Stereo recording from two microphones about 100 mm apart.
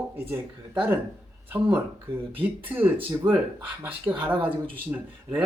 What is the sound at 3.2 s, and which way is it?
Speech, 45° right (ahead or behind).